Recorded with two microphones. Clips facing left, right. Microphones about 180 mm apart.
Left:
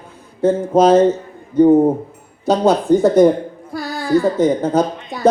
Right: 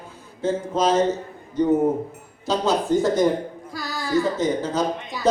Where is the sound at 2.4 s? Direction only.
55° left (ahead or behind).